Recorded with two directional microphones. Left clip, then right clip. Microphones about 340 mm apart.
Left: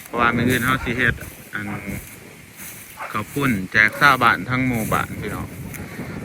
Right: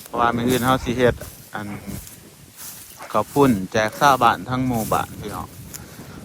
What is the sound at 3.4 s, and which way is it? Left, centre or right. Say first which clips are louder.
Speech: left 5 dB; centre.